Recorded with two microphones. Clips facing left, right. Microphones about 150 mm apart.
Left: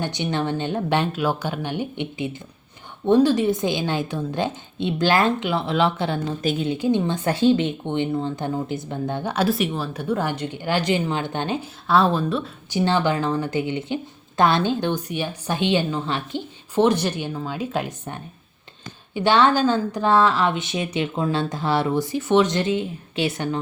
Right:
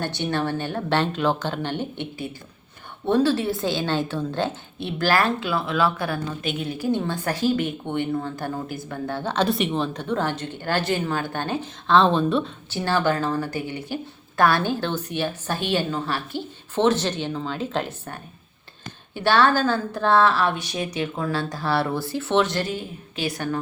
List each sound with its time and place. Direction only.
0.0 s a woman's voice: 15° left (ahead or behind)
6.4 s a woman's voice: 35° left (ahead or behind)
6.7 s a woman's voice: 20° left (ahead or behind); by 12.5 s 5° left (ahead or behind)
12.7 s a woman's voice: 20° left (ahead or behind)